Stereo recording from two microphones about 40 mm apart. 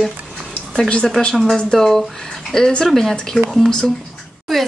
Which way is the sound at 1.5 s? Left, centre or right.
Centre.